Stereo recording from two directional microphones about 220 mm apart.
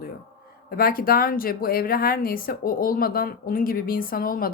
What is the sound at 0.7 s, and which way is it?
Speech, 40° left (ahead or behind).